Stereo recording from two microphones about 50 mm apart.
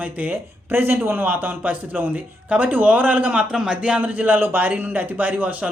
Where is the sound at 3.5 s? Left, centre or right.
Centre.